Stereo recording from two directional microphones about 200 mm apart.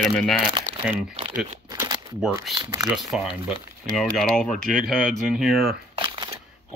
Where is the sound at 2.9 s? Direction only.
5° right (ahead or behind).